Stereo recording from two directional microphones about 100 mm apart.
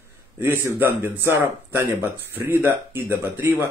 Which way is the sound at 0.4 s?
20° right (ahead or behind).